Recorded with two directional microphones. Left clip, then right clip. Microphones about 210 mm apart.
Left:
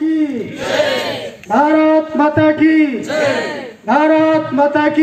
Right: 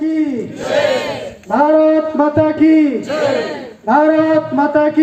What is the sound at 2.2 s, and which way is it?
Speech, 50° right (ahead or behind).